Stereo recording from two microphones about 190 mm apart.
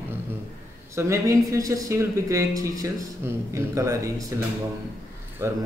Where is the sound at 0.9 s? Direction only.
15° right (ahead or behind).